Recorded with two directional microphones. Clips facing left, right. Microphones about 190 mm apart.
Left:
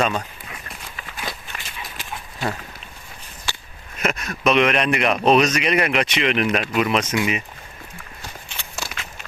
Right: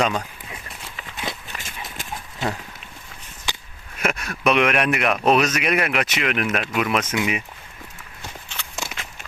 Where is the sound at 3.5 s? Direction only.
15° right (ahead or behind).